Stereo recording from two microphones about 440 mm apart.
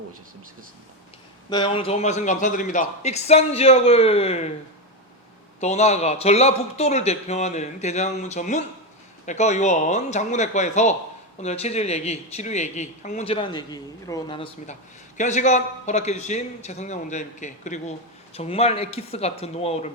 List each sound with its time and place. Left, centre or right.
1.5 s speech: centre
5.5 s speech: centre